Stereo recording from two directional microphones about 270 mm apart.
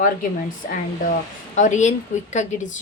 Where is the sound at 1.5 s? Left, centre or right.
Left.